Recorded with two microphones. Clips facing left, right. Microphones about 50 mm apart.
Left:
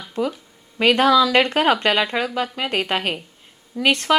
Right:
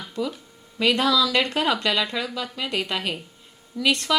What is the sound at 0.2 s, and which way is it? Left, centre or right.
Speech, left.